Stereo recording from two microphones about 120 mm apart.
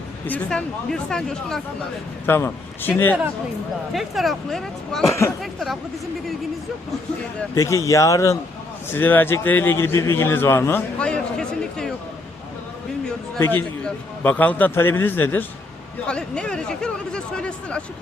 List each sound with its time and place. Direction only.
0.3 s speech: 10° left (ahead or behind)
2.2 s speech: 20° left (ahead or behind)
3.9 s speech: centre (ahead or behind)
7.5 s a man's voice: 30° left (ahead or behind); by 11.9 s 5° left (ahead or behind)
13.8 s speech: 10° left (ahead or behind)